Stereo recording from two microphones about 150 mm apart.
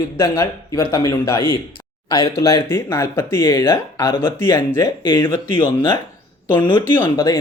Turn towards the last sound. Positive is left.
turn(degrees=25)  # may be behind; listen again after turning